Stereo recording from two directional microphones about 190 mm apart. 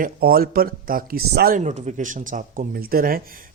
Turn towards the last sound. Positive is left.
turn(degrees=-50)  # may be behind; listen again after turning